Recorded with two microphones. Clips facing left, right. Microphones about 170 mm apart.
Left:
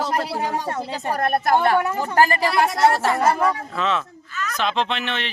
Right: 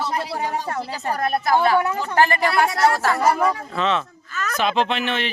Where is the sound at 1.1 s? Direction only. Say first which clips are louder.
Left 1 dB; 50° left (ahead or behind).